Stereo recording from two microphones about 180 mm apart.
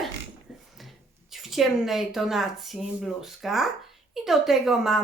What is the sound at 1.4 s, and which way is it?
A woman's voice, centre (ahead or behind).